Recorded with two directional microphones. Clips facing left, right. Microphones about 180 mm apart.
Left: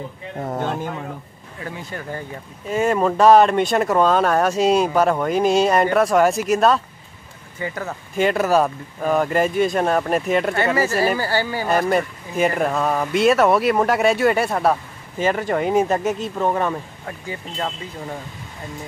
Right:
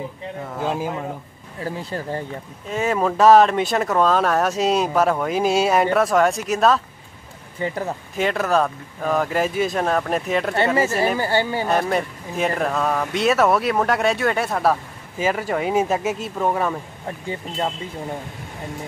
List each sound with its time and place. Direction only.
0.6 s speech: 5° right (ahead or behind)
1.6 s speech: 30° right (ahead or behind)
2.7 s speech: centre (ahead or behind)
7.6 s speech: 25° right (ahead or behind)
8.2 s speech: 5° left (ahead or behind)
10.8 s speech: 25° right (ahead or behind)
11.6 s speech: centre (ahead or behind)
17.3 s speech: 20° right (ahead or behind)